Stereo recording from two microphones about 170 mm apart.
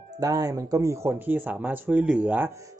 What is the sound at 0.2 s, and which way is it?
Speech, 20° right (ahead or behind).